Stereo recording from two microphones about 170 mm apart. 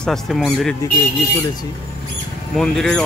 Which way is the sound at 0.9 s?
20° left (ahead or behind).